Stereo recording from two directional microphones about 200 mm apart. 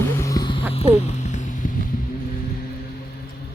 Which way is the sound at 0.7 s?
30° left (ahead or behind).